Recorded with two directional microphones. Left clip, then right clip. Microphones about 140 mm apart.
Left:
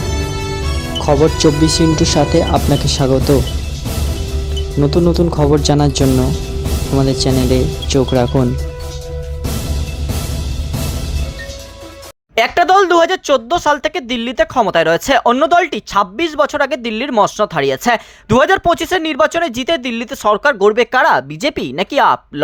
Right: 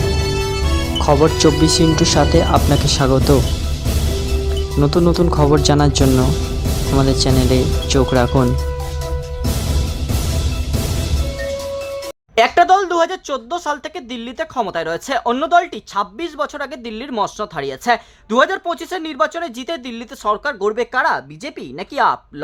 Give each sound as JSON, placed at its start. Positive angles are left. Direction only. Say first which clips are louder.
{"t": 0.9, "sound": "speech", "louder": "left 1 dB", "side_deg": 0}
{"t": 4.8, "sound": "speech", "louder": "left 2 dB", "side_deg": 0}
{"t": 12.4, "sound": "speech", "louder": "left 1 dB", "side_deg": 35}